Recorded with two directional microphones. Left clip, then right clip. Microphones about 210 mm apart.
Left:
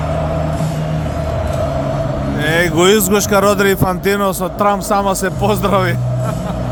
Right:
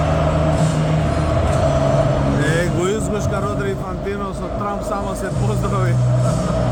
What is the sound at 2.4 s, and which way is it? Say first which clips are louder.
Speech: left 7 dB; 45° left (ahead or behind).